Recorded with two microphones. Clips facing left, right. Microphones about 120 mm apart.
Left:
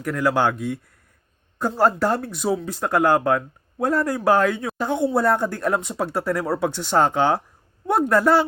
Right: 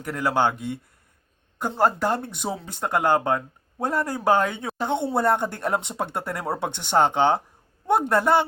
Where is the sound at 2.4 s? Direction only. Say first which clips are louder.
Left 9 dB; 5° right (ahead or behind).